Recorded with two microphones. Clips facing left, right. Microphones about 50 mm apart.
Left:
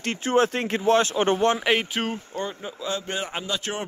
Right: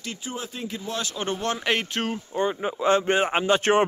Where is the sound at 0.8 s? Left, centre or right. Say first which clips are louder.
Left 12 dB; left.